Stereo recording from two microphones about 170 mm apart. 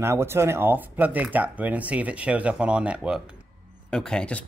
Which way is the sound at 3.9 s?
5° left (ahead or behind).